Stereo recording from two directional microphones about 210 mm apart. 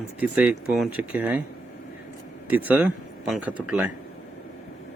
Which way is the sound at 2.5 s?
10° right (ahead or behind).